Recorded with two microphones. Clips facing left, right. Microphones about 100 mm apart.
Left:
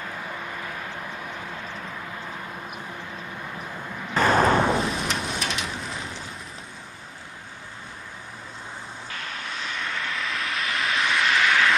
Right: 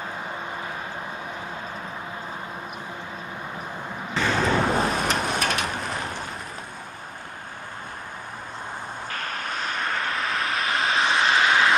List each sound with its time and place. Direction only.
4.1 s vehicle: 45° left (ahead or behind)
5.0 s vehicle: 45° right (ahead or behind)
9.1 s vehicle: 45° right (ahead or behind); by 11.7 s 30° right (ahead or behind)